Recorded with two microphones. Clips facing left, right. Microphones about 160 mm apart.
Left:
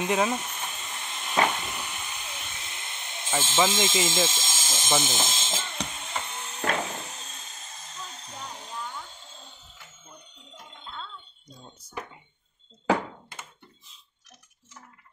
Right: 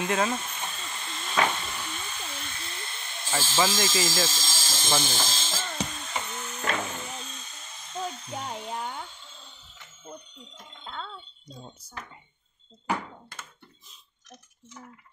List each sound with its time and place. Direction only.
0.0 s steam: 15° left (ahead or behind)
8.3 s music: 70° right (ahead or behind)
12.9 s thunk: 90° left